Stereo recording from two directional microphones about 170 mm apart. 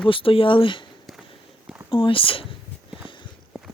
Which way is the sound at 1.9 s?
30° left (ahead or behind).